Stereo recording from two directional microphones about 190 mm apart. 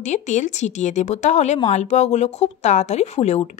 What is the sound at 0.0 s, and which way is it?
A woman's voice, 40° left (ahead or behind).